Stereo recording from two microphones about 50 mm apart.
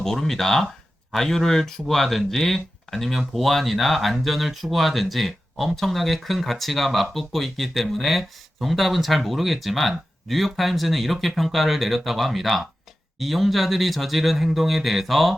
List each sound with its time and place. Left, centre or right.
0.0 s speech: centre